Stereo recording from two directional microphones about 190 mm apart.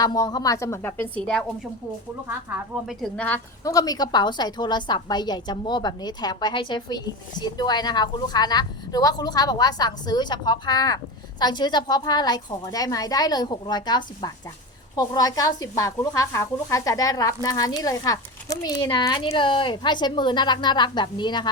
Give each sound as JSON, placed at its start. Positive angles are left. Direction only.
{"t": 0.0, "sound": "a woman's voice", "side_deg": 20}
{"t": 2.8, "sound": "a woman's voice", "side_deg": 5}